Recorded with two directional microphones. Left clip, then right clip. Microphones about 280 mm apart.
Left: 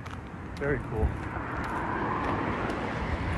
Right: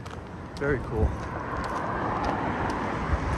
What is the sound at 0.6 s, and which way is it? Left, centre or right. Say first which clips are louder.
Speech: right 3 dB; centre.